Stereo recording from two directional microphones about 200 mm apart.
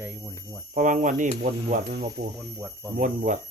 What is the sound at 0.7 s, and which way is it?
Speech, 40° right (ahead or behind).